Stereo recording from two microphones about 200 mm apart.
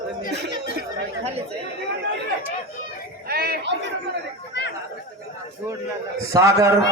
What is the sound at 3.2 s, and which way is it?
Chatter, 50° right (ahead or behind).